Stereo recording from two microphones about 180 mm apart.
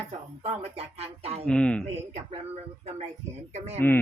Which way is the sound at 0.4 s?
35° right (ahead or behind).